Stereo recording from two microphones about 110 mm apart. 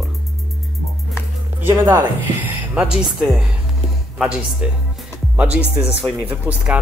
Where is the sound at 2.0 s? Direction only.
15° right (ahead or behind).